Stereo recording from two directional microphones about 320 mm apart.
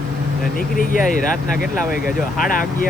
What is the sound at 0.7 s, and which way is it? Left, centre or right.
Speech, left.